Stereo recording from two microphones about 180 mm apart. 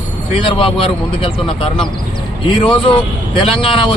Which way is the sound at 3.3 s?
30° left (ahead or behind).